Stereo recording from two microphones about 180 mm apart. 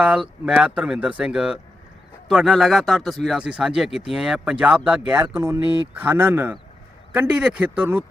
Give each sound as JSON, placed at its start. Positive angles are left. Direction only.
{"t": 0.0, "sound": "speech", "side_deg": -5}
{"t": 5.6, "sound": "speech", "side_deg": 25}
{"t": 5.9, "sound": "speech", "side_deg": -10}